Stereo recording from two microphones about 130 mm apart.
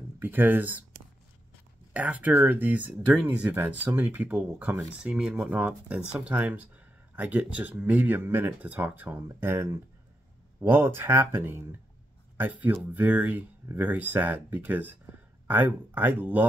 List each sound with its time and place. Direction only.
0.2 s speech: 15° right (ahead or behind)
2.0 s speech: 10° right (ahead or behind)
12.9 s speech: 10° right (ahead or behind)